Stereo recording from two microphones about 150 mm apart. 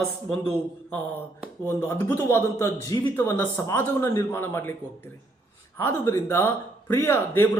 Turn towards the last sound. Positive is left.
turn(degrees=15)  # may be behind; listen again after turning